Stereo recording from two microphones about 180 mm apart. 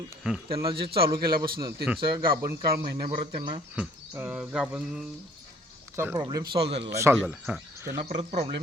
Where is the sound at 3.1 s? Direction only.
30° right (ahead or behind).